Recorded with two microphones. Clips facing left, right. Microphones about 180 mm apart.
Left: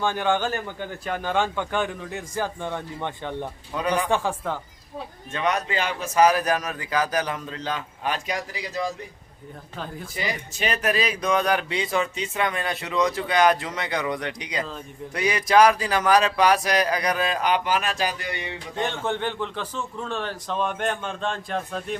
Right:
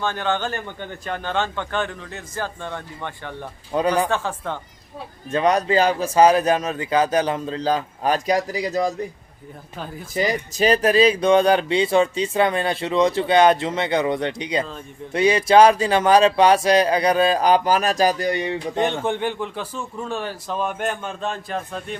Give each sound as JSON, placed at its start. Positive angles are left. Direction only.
{"t": 0.0, "sound": "speech", "side_deg": 10}
{"t": 3.7, "sound": "speech", "side_deg": -35}
{"t": 4.1, "sound": "speech", "side_deg": 10}
{"t": 5.3, "sound": "speech", "side_deg": -35}
{"t": 10.2, "sound": "speech", "side_deg": -40}
{"t": 18.8, "sound": "a man's voice", "side_deg": -15}